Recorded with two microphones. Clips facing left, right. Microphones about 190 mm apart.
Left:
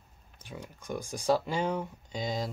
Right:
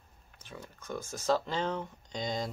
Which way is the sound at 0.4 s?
15° left (ahead or behind).